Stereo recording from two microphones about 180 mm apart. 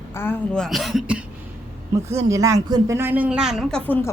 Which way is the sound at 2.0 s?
15° right (ahead or behind).